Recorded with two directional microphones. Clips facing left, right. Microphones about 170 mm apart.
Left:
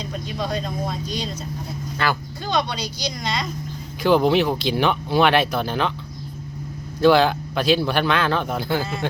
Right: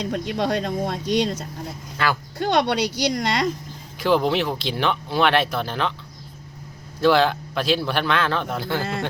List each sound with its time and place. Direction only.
0.0 s speech: 70° right (ahead or behind)
2.4 s speech: 70° right (ahead or behind)
4.0 s speech: centre (ahead or behind)
7.0 s speech: centre (ahead or behind)